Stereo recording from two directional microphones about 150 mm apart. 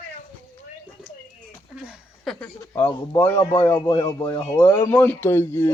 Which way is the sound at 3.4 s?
30° left (ahead or behind).